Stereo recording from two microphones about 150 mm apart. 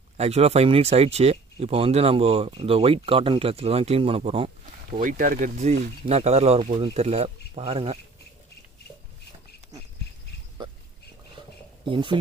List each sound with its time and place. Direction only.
0.2 s speech: 45° right (ahead or behind)
5.0 s speech: 65° right (ahead or behind); by 8.0 s 40° right (ahead or behind)
11.9 s speech: 35° right (ahead or behind)